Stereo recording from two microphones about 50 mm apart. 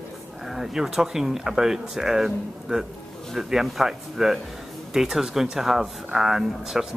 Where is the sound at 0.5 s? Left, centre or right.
Centre.